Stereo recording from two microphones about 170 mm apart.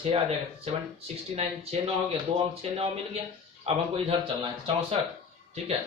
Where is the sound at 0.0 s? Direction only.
35° right (ahead or behind).